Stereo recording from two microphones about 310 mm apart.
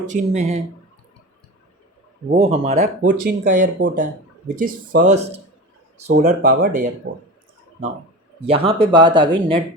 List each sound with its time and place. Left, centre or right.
0.0 s speech: right
2.3 s speech: right
8.4 s speech: centre